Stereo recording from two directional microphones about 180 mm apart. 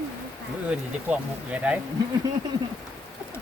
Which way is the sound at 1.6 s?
5° right (ahead or behind).